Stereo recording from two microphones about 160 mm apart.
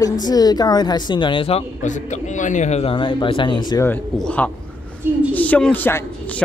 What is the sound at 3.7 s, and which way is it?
A man's voice, 15° left (ahead or behind).